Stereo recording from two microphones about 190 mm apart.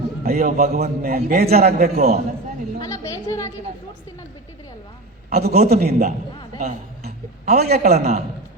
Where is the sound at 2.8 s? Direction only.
20° left (ahead or behind).